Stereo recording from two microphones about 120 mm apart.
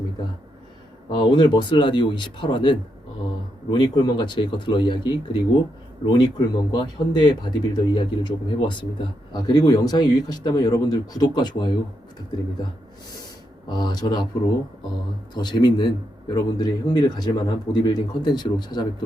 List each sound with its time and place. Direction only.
1.1 s speech: 40° left (ahead or behind)
13.7 s speech: 35° left (ahead or behind)
15.4 s speech: 35° left (ahead or behind)